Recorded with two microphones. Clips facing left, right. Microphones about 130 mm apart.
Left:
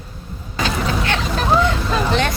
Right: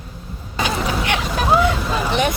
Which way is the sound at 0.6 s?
15° right (ahead or behind).